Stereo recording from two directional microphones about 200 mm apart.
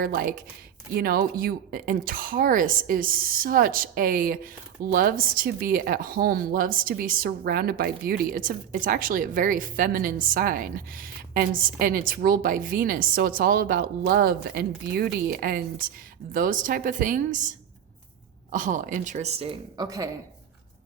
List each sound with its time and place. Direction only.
0.0 s speech: 45° right (ahead or behind)
18.5 s speech: 40° right (ahead or behind); by 20.1 s 20° right (ahead or behind)